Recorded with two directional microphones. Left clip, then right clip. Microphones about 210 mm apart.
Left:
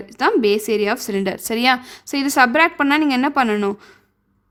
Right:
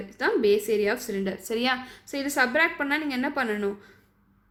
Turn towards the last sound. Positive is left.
turn(degrees=50)  # may be behind; listen again after turning